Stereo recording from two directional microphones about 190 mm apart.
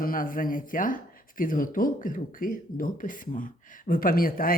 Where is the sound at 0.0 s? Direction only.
50° left (ahead or behind).